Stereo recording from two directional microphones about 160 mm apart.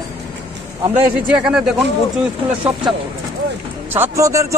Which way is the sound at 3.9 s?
15° right (ahead or behind).